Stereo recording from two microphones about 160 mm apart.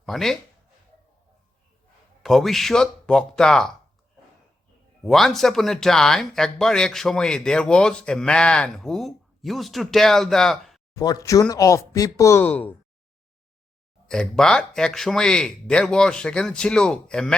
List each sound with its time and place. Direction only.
0.0 s speech: centre (ahead or behind)
2.2 s speech: centre (ahead or behind)
5.0 s speech: centre (ahead or behind)
10.9 s speech: 20° left (ahead or behind)
14.1 s speech: 5° left (ahead or behind)